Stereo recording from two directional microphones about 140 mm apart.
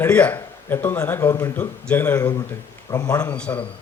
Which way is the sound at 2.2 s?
30° left (ahead or behind).